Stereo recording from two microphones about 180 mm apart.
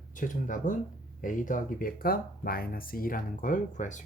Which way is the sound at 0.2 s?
45° left (ahead or behind).